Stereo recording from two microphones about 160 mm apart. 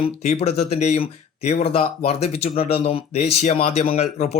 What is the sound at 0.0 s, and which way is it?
Speech, 40° left (ahead or behind).